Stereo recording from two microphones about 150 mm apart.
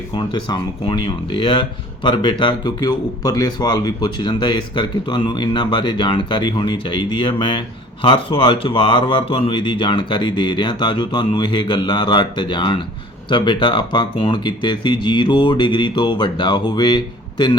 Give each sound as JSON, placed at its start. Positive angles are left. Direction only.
{"t": 0.2, "sound": "speech", "side_deg": 30}